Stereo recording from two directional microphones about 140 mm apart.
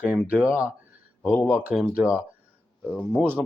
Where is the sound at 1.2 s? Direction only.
15° left (ahead or behind).